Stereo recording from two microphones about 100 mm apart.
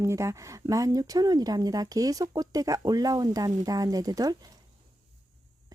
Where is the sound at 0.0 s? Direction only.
30° right (ahead or behind).